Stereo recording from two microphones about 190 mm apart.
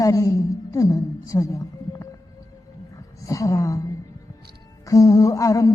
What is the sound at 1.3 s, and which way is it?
Wild animals, 15° left (ahead or behind).